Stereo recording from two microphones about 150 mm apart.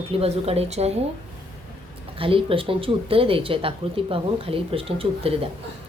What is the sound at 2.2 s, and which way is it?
A woman's voice, 35° right (ahead or behind).